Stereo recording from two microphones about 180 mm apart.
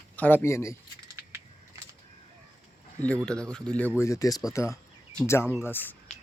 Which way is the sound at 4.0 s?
15° left (ahead or behind).